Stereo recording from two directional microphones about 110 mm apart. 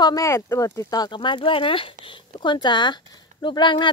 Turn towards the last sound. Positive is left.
turn(degrees=45)  # may be behind; listen again after turning